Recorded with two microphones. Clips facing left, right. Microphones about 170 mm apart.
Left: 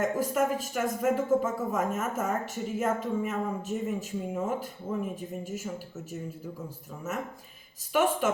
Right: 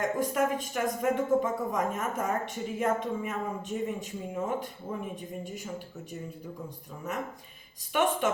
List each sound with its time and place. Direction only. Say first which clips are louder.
0.0 s speech: left 1 dB; 5° left (ahead or behind)
7.9 s speech: left 2 dB; 5° left (ahead or behind)